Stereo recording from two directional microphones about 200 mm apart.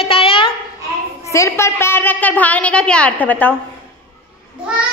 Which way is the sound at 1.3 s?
15° left (ahead or behind).